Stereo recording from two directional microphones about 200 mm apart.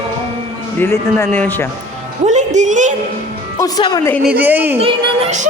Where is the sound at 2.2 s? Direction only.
35° right (ahead or behind).